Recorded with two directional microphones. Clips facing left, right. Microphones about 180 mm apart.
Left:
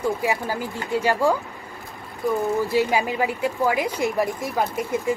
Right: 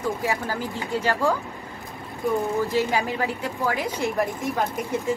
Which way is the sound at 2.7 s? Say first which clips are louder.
Left 2 dB; 10° left (ahead or behind).